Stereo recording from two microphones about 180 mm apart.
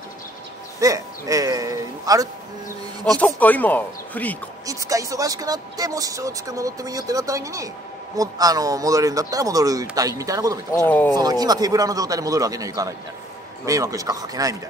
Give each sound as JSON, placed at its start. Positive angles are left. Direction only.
{"t": 0.7, "sound": "a sound", "side_deg": -20}
{"t": 3.3, "sound": "speech", "side_deg": 10}
{"t": 4.6, "sound": "speech", "side_deg": -20}
{"t": 10.9, "sound": "speech", "side_deg": 10}
{"t": 11.1, "sound": "speech", "side_deg": -20}